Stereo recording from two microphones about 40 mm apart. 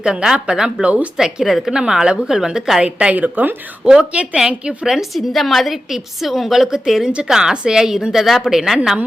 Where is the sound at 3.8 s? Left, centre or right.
Right.